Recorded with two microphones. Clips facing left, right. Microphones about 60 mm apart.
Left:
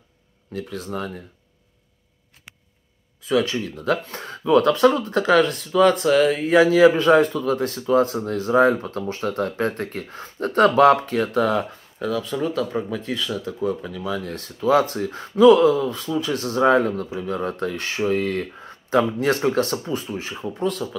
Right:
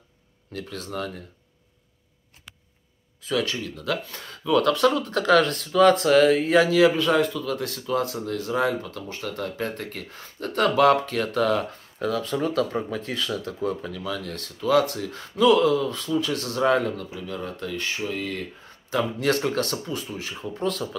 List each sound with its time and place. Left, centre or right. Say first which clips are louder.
0.5 s speech: left 4 dB; centre
3.3 s speech: left 5 dB; left; by 6.5 s centre
6.5 s speech: left 4 dB; left
12.0 s speech: left 1 dB; centre